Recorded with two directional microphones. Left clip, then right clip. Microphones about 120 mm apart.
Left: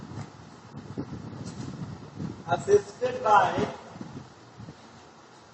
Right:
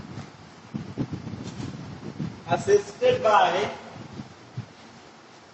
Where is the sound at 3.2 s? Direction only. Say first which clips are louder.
Left 2 dB; 35° right (ahead or behind).